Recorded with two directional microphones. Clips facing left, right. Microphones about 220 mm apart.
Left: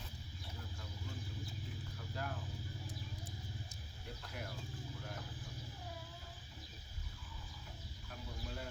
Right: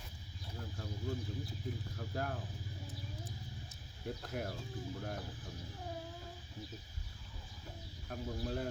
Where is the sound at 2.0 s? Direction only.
45° right (ahead or behind).